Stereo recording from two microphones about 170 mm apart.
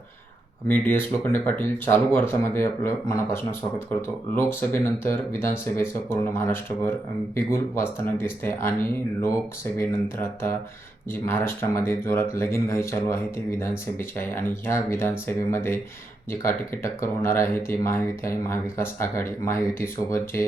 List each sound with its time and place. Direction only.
0.7 s speech: 10° left (ahead or behind)